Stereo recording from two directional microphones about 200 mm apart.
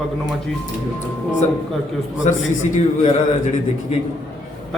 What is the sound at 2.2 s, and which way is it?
Speech, 35° left (ahead or behind).